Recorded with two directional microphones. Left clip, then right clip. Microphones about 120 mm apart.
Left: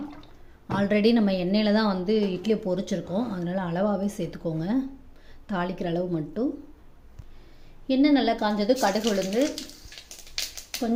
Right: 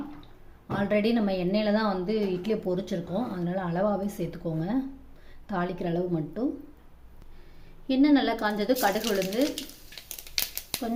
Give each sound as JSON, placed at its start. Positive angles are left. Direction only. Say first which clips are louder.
{"t": 0.7, "sound": "a woman's voice", "louder": "left 3 dB", "side_deg": 25}
{"t": 7.9, "sound": "speech", "louder": "left 1 dB", "side_deg": 15}